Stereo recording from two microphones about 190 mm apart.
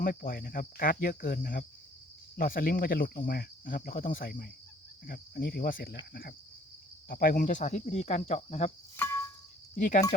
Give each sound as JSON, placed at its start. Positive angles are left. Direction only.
{"t": 0.0, "sound": "cricket", "side_deg": 50}
{"t": 7.1, "sound": "speech", "side_deg": 55}
{"t": 9.7, "sound": "cricket", "side_deg": 45}